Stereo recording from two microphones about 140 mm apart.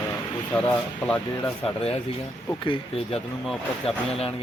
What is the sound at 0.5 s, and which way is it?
Speech, 10° left (ahead or behind).